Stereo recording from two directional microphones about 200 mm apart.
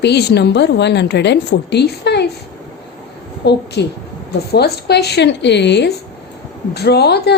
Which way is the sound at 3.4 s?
55° left (ahead or behind).